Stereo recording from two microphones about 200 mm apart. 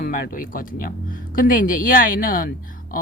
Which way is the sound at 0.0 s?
45° left (ahead or behind).